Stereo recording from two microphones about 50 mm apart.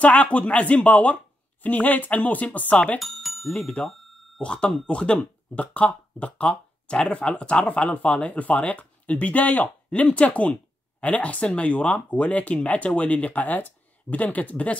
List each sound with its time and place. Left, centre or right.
0.0 s speech: left
3.0 s bicycle bell: centre
3.4 s speech: centre
3.8 s speech: centre
4.4 s speech: centre